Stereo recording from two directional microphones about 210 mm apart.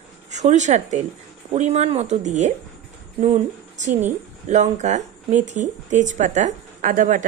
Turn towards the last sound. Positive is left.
turn(degrees=-40)  # may be behind; listen again after turning